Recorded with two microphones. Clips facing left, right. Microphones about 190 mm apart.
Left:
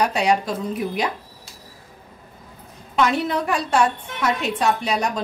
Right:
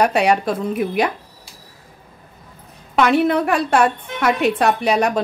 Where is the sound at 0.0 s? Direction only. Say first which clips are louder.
Right 4 dB; 60° right (ahead or behind).